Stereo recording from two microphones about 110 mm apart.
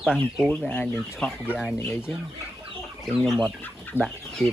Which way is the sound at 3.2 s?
Centre (ahead or behind).